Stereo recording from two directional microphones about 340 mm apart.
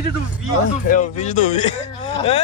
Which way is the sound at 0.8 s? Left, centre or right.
Left.